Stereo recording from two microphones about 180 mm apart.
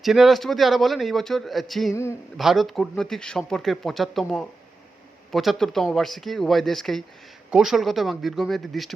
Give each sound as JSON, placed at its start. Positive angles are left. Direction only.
{"t": 0.0, "sound": "speech", "side_deg": 0}
{"t": 1.9, "sound": "a man's voice", "side_deg": 15}
{"t": 2.4, "sound": "speech", "side_deg": 0}